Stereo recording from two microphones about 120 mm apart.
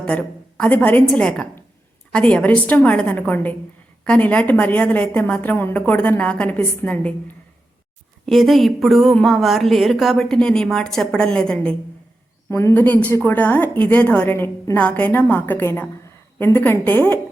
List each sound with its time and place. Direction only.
0.0 s a woman's voice: 10° left (ahead or behind)
8.3 s speech: centre (ahead or behind)
12.5 s a woman's voice: 20° left (ahead or behind)